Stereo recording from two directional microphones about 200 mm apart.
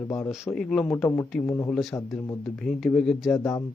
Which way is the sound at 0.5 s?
5° left (ahead or behind).